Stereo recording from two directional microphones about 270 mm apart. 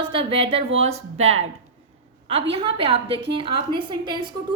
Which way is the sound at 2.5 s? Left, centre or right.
Right.